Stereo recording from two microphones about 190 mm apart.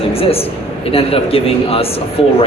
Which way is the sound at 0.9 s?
30° left (ahead or behind).